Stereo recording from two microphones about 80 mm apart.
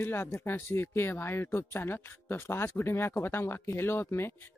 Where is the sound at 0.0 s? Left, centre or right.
Left.